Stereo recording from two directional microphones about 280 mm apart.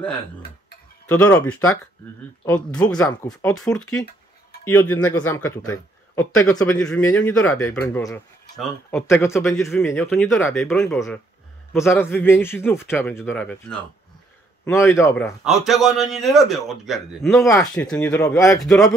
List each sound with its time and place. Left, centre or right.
1.0 s a man's voice: centre
15.4 s a man's voice: centre
18.6 s speech: centre